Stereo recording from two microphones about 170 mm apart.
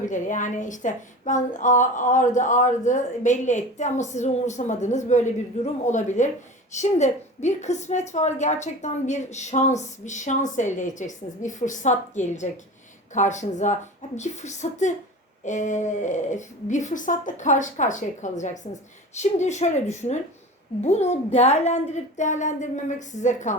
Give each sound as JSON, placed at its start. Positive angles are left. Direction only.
{"t": 0.0, "sound": "a woman's voice", "side_deg": 50}